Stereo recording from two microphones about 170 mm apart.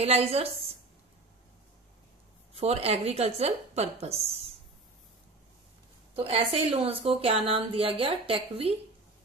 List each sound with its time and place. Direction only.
0.0 s a woman's voice: 35° right (ahead or behind)
2.5 s a woman's voice: 35° right (ahead or behind)
6.1 s a woman's voice: 35° right (ahead or behind)